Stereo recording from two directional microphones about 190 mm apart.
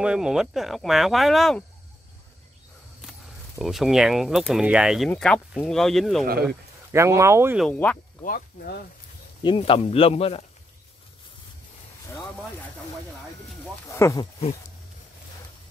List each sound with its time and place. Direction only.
0.0 s speech: 5° right (ahead or behind)
3.0 s speech: centre (ahead or behind)
6.9 s speech: 15° right (ahead or behind)
7.5 s speech: 5° left (ahead or behind)
8.2 s speech: 50° left (ahead or behind)
9.6 s speech: 30° left (ahead or behind)
12.1 s speech: 15° left (ahead or behind)
13.9 s speech: 15° left (ahead or behind)